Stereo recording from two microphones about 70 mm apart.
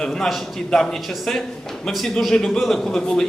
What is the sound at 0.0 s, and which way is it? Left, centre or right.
A man's voice, centre.